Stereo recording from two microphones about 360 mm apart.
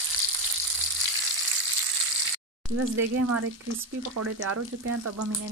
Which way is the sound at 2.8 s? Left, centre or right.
Right.